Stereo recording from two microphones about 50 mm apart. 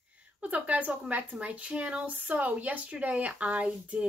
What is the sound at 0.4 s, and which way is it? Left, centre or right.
Speech, right.